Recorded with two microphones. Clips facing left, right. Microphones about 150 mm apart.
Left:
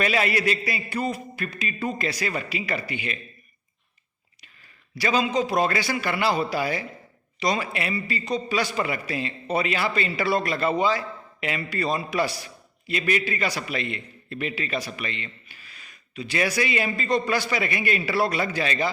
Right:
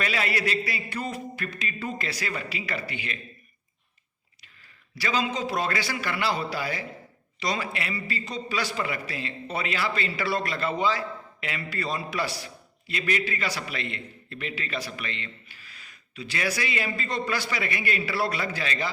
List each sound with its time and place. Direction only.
0.0 s a man's voice: 15° left (ahead or behind)
4.9 s a man's voice: 15° left (ahead or behind)